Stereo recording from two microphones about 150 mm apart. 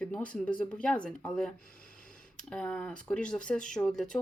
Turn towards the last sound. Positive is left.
turn(degrees=5)  # may be behind; listen again after turning